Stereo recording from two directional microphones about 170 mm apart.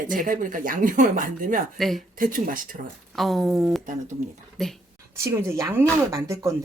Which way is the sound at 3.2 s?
Centre (ahead or behind).